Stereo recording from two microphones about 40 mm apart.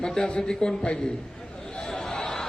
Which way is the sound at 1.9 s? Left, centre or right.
Centre.